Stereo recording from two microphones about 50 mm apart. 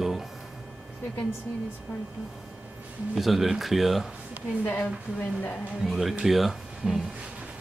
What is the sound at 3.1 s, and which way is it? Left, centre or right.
Speech, centre.